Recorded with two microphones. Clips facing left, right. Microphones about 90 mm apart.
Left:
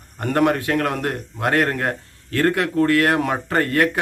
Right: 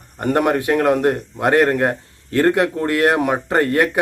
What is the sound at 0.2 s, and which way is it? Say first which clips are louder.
A man's voice: right 2 dB; 15° right (ahead or behind).